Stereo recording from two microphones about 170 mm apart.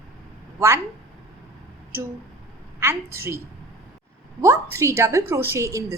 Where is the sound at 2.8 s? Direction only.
15° right (ahead or behind).